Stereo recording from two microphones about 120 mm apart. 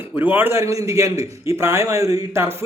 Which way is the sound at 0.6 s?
25° right (ahead or behind).